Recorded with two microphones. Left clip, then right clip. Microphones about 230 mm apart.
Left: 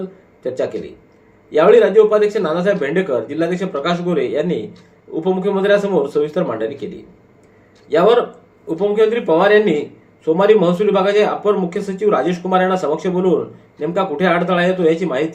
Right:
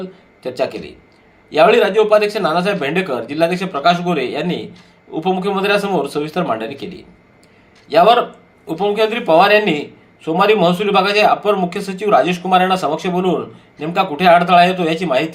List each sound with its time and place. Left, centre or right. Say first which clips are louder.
1.5 s speech: left 1 dB; right
7.9 s speech: right 2 dB; right